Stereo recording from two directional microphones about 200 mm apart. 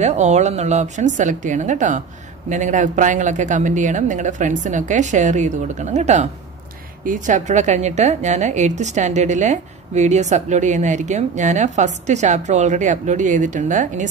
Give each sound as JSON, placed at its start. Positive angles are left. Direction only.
{"t": 0.0, "sound": "a woman's voice", "side_deg": -35}